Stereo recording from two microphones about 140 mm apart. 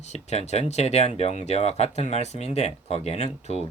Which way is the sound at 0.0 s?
50° left (ahead or behind).